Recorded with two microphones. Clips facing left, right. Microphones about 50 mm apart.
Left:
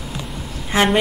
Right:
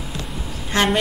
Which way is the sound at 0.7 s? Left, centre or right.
Centre.